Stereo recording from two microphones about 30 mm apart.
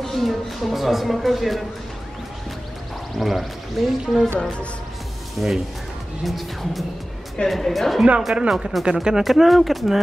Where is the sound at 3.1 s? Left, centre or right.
Centre.